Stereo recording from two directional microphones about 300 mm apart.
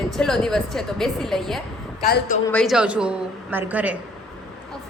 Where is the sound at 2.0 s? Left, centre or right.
Left.